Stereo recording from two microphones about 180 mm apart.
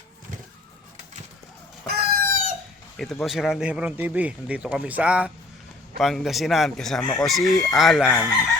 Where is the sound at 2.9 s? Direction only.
Centre (ahead or behind).